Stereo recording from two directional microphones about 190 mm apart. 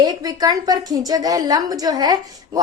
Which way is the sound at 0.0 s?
20° right (ahead or behind).